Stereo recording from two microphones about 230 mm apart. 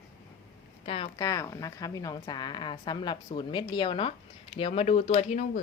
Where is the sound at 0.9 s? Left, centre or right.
Left.